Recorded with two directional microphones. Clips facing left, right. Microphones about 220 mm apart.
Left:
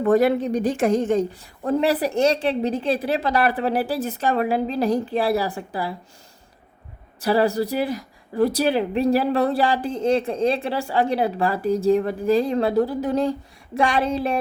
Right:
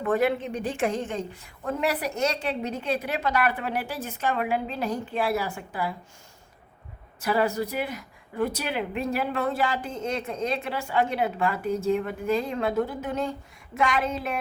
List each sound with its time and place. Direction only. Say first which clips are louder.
0.0 s speech: left 7 dB; 35° left (ahead or behind)
7.2 s speech: left 5 dB; 35° left (ahead or behind)